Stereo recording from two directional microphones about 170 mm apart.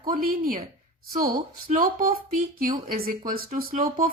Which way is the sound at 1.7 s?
55° right (ahead or behind).